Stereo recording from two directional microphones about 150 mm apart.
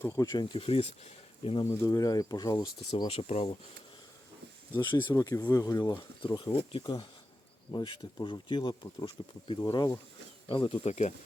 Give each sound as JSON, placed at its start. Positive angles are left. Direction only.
{"t": 0.0, "sound": "speech", "side_deg": 25}
{"t": 1.6, "sound": "speech", "side_deg": 15}
{"t": 3.1, "sound": "speech", "side_deg": 45}
{"t": 4.8, "sound": "speech", "side_deg": 30}
{"t": 6.2, "sound": "speech", "side_deg": 30}
{"t": 10.8, "sound": "speech", "side_deg": 50}